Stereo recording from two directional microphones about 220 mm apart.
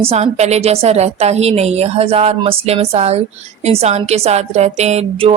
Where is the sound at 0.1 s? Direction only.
30° right (ahead or behind).